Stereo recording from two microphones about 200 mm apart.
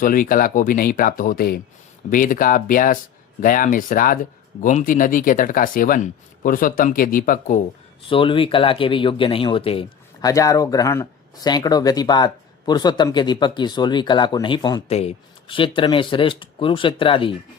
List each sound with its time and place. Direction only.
0.0 s speech: 45° left (ahead or behind)
8.1 s speech: 25° left (ahead or behind)
14.8 s speech: 30° left (ahead or behind)